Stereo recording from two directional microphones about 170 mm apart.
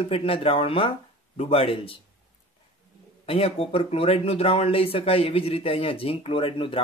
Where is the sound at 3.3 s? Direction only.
35° left (ahead or behind).